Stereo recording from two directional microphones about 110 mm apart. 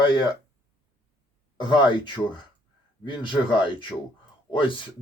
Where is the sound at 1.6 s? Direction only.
45° left (ahead or behind).